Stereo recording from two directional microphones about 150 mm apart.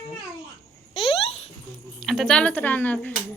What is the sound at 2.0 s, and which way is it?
Speech, centre (ahead or behind).